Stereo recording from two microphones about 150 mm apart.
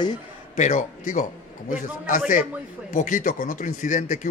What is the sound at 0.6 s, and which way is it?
A man's voice, 55° left (ahead or behind).